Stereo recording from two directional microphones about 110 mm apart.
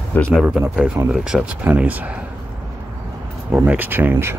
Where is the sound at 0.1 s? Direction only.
10° left (ahead or behind).